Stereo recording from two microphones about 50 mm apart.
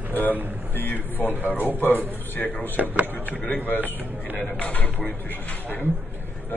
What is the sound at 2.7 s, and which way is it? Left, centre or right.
Speech, right.